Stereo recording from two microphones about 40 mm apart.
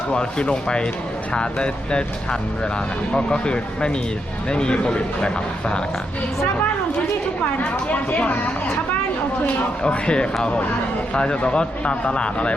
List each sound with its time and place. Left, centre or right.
0.1 s speech: left
3.1 s speech: left
7.6 s speech: left
9.8 s speech: left